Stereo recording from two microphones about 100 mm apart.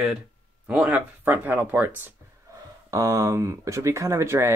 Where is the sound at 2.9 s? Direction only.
35° right (ahead or behind).